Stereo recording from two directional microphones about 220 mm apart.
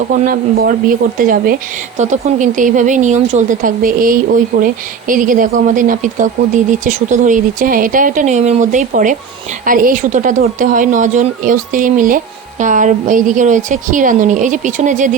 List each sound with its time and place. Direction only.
0.3 s speech: 40° right (ahead or behind)